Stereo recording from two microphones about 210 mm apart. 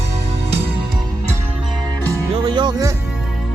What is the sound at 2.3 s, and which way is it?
Speech, 20° right (ahead or behind).